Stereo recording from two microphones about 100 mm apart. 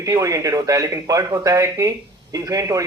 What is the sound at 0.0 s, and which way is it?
Speech, 35° right (ahead or behind).